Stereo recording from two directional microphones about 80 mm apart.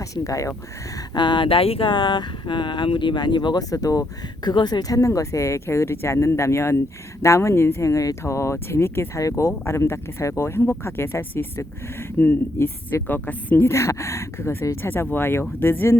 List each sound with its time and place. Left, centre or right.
0.0 s speech: left
1.1 s speech: left
3.6 s speech: left
4.4 s speech: left
9.5 s speech: left
13.7 s speech: left